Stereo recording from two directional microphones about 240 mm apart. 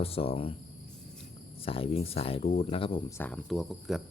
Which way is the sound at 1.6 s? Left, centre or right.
Left.